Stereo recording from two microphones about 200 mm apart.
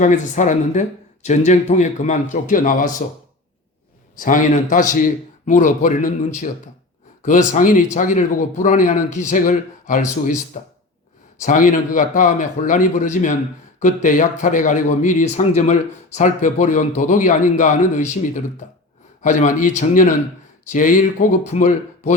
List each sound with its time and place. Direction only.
0.0 s speech: 40° left (ahead or behind)
4.2 s speech: 40° left (ahead or behind)